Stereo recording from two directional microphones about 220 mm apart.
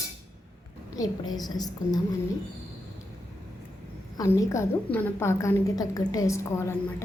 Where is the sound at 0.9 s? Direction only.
15° left (ahead or behind).